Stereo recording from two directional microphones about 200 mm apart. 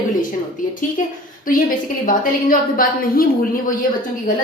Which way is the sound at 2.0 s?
45° left (ahead or behind).